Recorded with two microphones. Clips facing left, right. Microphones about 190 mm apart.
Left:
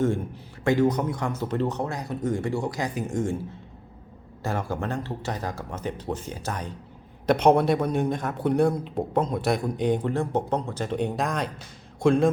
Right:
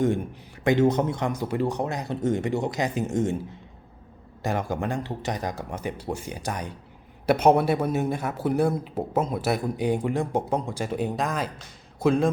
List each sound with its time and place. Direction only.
0.6 s speech: 20° right (ahead or behind)
4.4 s a man's voice: 15° right (ahead or behind)